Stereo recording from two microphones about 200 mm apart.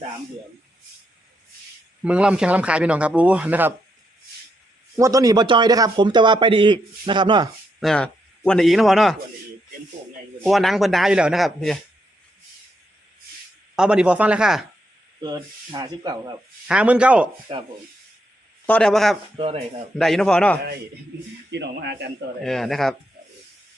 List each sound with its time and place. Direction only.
2.0 s speech: 5° right (ahead or behind)
4.9 s speech: 15° right (ahead or behind)
7.8 s speech: 5° left (ahead or behind)
10.4 s speech: centre (ahead or behind)
13.7 s speech: 5° right (ahead or behind)
15.2 s speech: 20° right (ahead or behind)
16.6 s speech: 5° right (ahead or behind)
17.5 s speech: 30° right (ahead or behind)
18.6 s speech: 5° left (ahead or behind)
19.4 s speech: 30° right (ahead or behind)
20.0 s speech: centre (ahead or behind)
21.5 s speech: 60° right (ahead or behind)
22.4 s speech: centre (ahead or behind)